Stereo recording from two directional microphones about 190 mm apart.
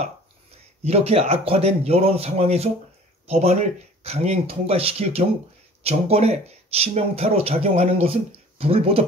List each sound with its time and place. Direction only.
0.8 s speech: 30° right (ahead or behind)